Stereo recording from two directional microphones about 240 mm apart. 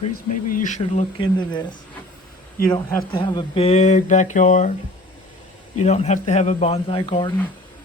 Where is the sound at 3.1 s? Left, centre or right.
Centre.